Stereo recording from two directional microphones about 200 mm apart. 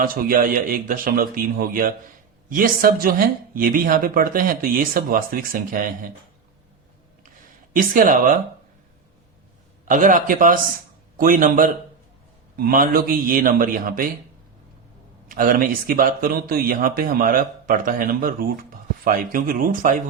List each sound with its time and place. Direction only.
0.0 s speech: 45° right (ahead or behind)
7.7 s speech: 45° right (ahead or behind)
9.8 s speech: 40° right (ahead or behind)
15.3 s speech: 45° right (ahead or behind)